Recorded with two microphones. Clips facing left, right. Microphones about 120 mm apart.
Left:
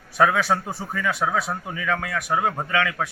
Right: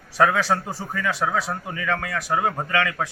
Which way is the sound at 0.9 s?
5° left (ahead or behind).